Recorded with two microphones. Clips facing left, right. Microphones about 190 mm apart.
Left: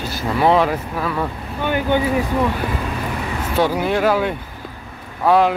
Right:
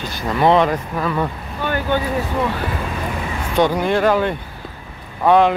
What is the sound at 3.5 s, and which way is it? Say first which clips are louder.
Speech: right 2 dB; 5° left (ahead or behind).